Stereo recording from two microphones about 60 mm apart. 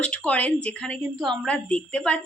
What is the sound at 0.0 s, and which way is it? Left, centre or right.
A woman's voice, left.